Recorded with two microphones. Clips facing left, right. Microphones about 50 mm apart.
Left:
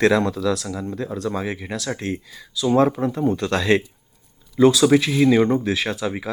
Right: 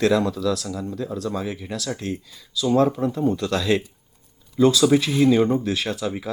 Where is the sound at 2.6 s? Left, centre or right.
Left.